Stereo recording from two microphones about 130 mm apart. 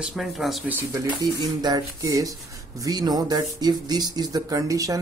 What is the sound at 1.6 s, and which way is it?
A man's voice, 30° right (ahead or behind).